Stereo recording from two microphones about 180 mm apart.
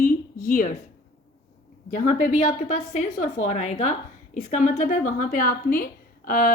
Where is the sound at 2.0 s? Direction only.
45° left (ahead or behind).